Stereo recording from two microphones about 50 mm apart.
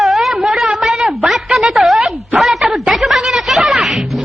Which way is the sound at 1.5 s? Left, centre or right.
Centre.